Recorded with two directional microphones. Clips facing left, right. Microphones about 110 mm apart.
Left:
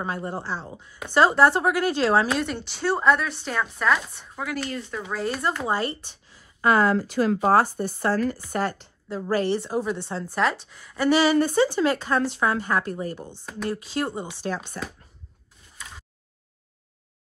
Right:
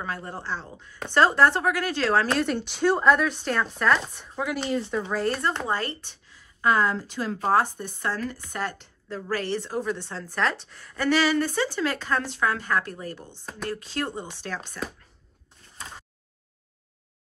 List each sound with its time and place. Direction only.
0.0 s speech: 20° left (ahead or behind)
2.2 s speech: 5° left (ahead or behind)
6.6 s speech: 55° left (ahead or behind)
7.7 s speech: 35° left (ahead or behind)
9.1 s speech: 20° left (ahead or behind)
11.2 s a woman's voice: 25° left (ahead or behind)
14.8 s speech: 30° left (ahead or behind)